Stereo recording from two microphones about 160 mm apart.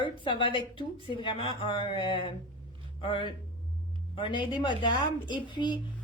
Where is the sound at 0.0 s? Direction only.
30° left (ahead or behind).